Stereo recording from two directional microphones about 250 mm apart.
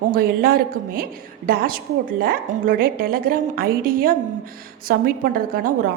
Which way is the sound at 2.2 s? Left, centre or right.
Right.